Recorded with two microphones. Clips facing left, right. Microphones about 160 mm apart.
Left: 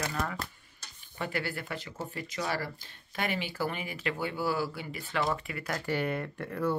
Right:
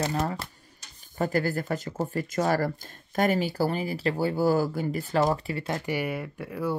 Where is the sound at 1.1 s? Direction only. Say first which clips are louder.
Right 8 dB; 40° right (ahead or behind).